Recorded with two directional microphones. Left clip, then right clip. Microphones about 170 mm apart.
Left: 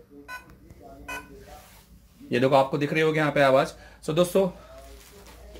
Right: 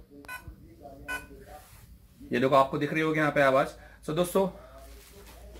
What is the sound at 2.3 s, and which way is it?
Speech, 40° left (ahead or behind).